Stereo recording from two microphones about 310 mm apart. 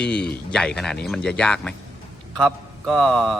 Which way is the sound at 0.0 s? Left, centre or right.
Centre.